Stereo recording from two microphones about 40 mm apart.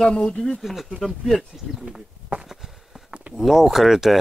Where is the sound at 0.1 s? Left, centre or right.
Left.